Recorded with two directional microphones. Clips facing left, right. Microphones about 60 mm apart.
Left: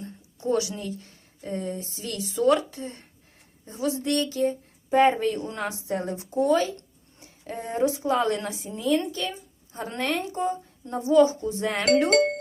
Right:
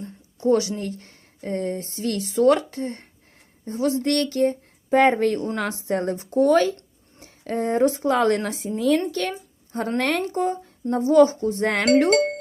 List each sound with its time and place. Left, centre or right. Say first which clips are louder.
0.0 s a woman's voice: right 7 dB; right
10.9 s speech: right 3 dB; right